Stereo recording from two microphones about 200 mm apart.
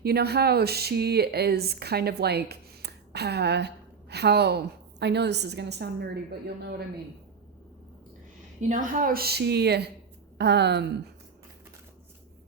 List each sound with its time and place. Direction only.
0.0 s a woman's voice: 55° right (ahead or behind)
8.6 s a woman's voice: 40° right (ahead or behind); by 10.8 s 55° right (ahead or behind)